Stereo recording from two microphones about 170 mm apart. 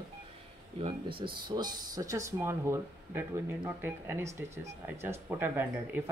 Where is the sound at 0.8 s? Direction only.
30° right (ahead or behind).